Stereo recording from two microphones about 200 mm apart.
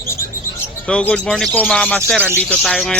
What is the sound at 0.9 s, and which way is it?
Speech, 5° left (ahead or behind).